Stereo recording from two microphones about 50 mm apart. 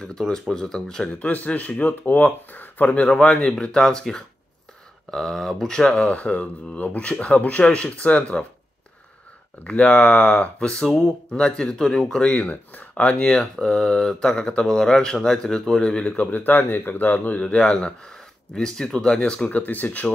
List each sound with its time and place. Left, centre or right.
0.0 s speech: centre
1.0 s speech: left
3.5 s speech: centre
5.8 s speech: centre
9.7 s speech: left
11.3 s speech: centre
16.2 s speech: left
17.4 s speech: left
19.5 s speech: left